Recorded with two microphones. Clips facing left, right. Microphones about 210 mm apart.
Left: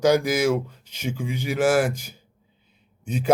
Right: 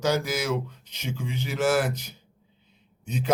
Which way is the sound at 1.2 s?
10° left (ahead or behind).